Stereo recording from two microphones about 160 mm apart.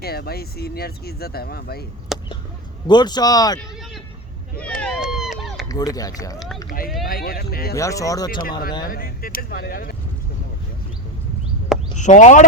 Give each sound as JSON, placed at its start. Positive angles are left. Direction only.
{"t": 0.0, "sound": "speech", "side_deg": 75}
{"t": 2.1, "sound": "a sound", "side_deg": 0}
{"t": 2.8, "sound": "speech", "side_deg": 25}
{"t": 4.5, "sound": "vehicle", "side_deg": 10}
{"t": 4.9, "sound": "run", "side_deg": 0}
{"t": 5.6, "sound": "speech", "side_deg": 20}
{"t": 6.7, "sound": "speech", "side_deg": 65}
{"t": 7.8, "sound": "speech", "side_deg": 20}
{"t": 8.3, "sound": "speech", "side_deg": 60}
{"t": 11.9, "sound": "speech", "side_deg": 50}